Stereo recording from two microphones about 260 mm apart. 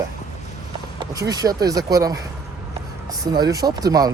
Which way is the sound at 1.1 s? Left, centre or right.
Centre.